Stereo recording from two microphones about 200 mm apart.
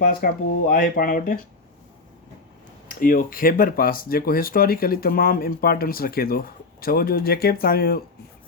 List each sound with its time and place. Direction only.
0.0 s speech: 45° left (ahead or behind)
2.9 s speech: 45° left (ahead or behind)